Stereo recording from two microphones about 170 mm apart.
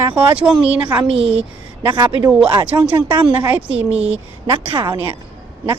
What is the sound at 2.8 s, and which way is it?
Speech, 10° right (ahead or behind).